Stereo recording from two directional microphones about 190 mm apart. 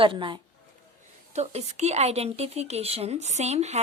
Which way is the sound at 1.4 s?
35° right (ahead or behind).